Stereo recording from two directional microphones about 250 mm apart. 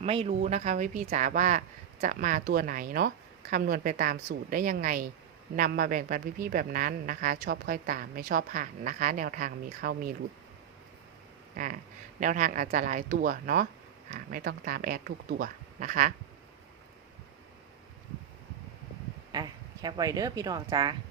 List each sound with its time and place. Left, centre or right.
0.0 s speech: right
11.5 s speech: right
19.3 s speech: centre